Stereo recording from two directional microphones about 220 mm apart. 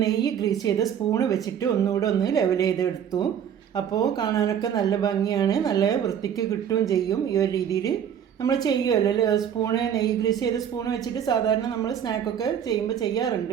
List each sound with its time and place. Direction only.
0.0 s a woman's voice: 15° left (ahead or behind)